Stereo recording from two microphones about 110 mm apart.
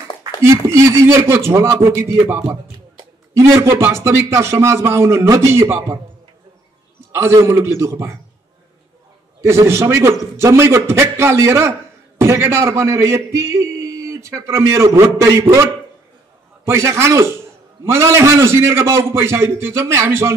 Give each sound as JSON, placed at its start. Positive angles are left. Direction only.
{"t": 0.4, "sound": "a man's voice", "side_deg": -25}
{"t": 7.2, "sound": "a man's voice", "side_deg": -25}
{"t": 9.4, "sound": "a man's voice", "side_deg": -25}